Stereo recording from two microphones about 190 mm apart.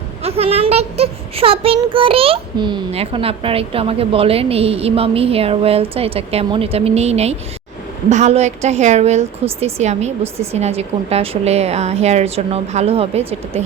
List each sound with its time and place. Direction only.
0.2 s speech: 30° right (ahead or behind)